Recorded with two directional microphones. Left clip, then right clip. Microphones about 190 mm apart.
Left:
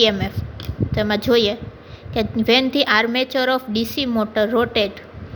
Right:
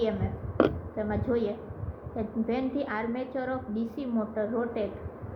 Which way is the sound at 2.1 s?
50° left (ahead or behind).